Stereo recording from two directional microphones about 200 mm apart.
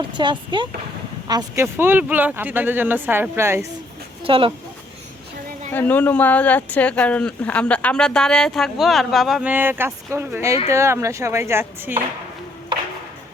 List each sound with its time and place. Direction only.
0.1 s speech: 25° right (ahead or behind)
4.2 s speech: 25° right (ahead or behind)
5.7 s speech: 10° left (ahead or behind); by 11.9 s 15° right (ahead or behind)
12.7 s ping: 25° right (ahead or behind)